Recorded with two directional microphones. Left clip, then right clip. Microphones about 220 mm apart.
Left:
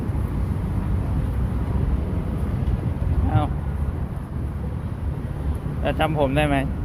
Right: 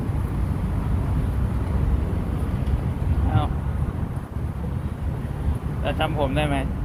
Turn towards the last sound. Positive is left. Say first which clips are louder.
# left 3 dB
turn(degrees=35)  # may be behind; listen again after turning